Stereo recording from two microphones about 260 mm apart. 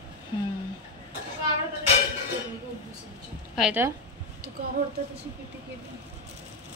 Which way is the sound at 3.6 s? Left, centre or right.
Centre.